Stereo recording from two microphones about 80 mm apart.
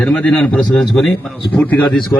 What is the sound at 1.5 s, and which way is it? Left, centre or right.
Speech, centre.